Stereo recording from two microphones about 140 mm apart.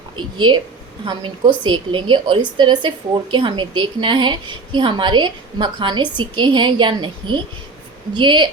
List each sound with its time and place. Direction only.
0.2 s a woman's voice: 35° right (ahead or behind)